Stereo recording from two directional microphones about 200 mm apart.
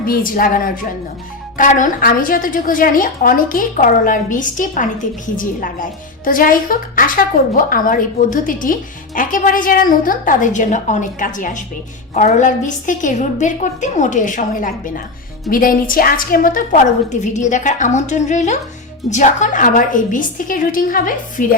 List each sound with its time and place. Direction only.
0.0 s a woman's voice: 45° left (ahead or behind)